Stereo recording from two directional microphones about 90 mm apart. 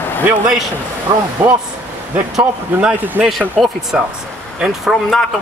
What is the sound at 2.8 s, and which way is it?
Speech, 20° right (ahead or behind).